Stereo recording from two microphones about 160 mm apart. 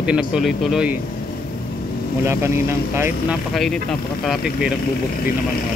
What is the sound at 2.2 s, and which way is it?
Speech, 15° right (ahead or behind).